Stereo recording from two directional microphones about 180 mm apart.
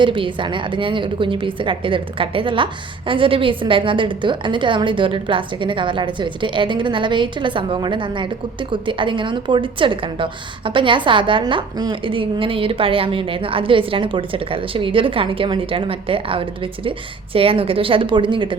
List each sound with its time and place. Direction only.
0.0 s a woman's voice: 25° right (ahead or behind)